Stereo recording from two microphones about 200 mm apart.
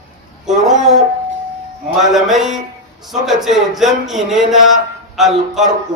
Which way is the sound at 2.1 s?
Centre (ahead or behind).